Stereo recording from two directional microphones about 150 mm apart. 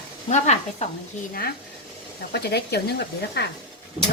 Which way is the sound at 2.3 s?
90° left.